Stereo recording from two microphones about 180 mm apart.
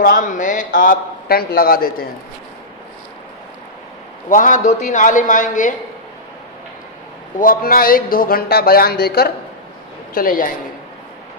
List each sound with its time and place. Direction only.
0.0 s a man's voice: 50° left (ahead or behind)
4.3 s a man's voice: 45° left (ahead or behind)
7.3 s a man's voice: 50° left (ahead or behind)